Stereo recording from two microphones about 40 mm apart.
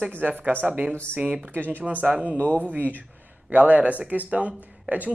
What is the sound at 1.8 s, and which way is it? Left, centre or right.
Speech, right.